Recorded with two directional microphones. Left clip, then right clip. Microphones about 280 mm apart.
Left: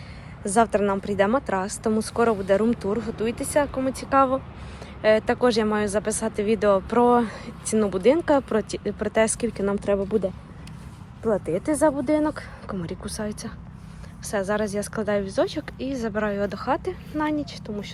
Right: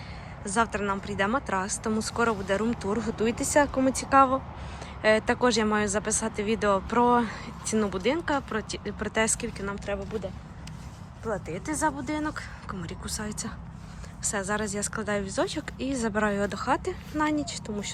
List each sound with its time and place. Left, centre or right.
0.4 s speech: centre
11.5 s speech: centre